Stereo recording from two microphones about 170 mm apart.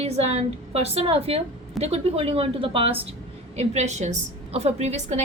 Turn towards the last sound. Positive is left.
turn(degrees=-40)  # may be behind; listen again after turning